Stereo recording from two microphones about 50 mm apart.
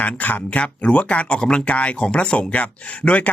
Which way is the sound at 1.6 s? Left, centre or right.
Left.